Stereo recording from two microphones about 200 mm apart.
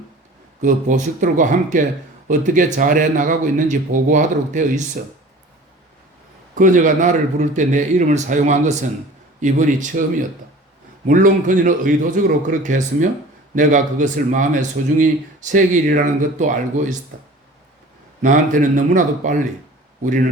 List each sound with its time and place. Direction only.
0.6 s speech: 40° right (ahead or behind)
6.6 s speech: 40° right (ahead or behind)
11.1 s speech: 40° right (ahead or behind)